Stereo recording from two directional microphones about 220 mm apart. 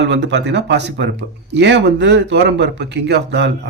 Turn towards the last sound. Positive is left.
turn(degrees=-50)  # may be behind; listen again after turning